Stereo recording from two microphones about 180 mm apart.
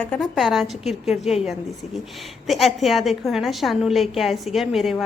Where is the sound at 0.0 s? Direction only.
5° left (ahead or behind).